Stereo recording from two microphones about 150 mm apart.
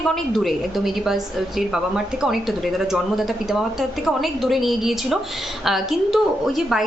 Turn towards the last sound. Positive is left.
turn(degrees=0)  # may be behind; listen again after turning